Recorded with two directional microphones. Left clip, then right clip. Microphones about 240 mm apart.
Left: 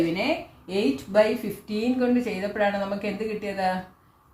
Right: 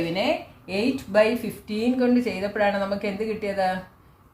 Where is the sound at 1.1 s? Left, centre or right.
Right.